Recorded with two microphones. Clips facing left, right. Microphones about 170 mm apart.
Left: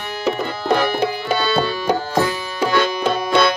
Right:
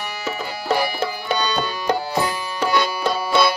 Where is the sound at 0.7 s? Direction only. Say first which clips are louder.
Left 3 dB; 10° right (ahead or behind).